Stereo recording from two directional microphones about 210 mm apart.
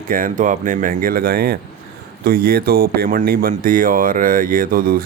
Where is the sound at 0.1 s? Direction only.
40° right (ahead or behind).